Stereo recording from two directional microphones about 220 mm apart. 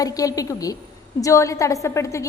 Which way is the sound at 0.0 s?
15° left (ahead or behind).